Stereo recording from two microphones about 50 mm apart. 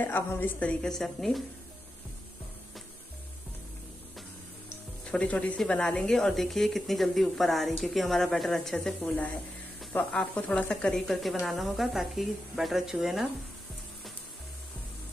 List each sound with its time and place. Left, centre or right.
0.4 s speech: left
0.8 s speech: centre
5.0 s speech: left
6.0 s speech: centre
9.0 s speech: left; by 11.1 s centre
11.4 s speech: centre